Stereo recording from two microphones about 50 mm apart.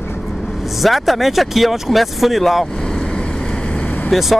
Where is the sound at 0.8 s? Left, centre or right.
Centre.